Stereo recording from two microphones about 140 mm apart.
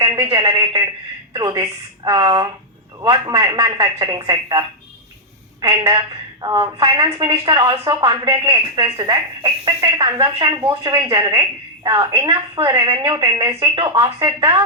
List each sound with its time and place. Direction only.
0.0 s a sound: 30° right (ahead or behind)
0.3 s a man's voice: 30° right (ahead or behind)
5.8 s a woman's voice: 35° right (ahead or behind)